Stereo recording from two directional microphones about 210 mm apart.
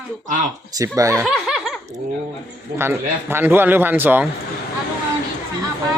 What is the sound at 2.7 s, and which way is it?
A man's voice, 10° right (ahead or behind).